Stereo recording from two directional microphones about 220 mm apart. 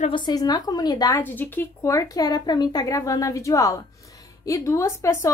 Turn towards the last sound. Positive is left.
turn(degrees=10)  # may be behind; listen again after turning